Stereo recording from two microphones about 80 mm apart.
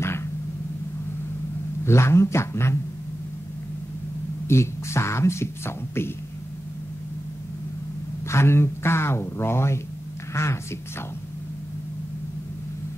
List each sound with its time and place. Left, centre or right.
0.0 s a sound: left
1.9 s speech: left
4.5 s speech: left
8.3 s speech: left